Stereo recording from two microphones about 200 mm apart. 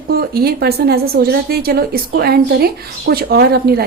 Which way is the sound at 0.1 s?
50° right (ahead or behind).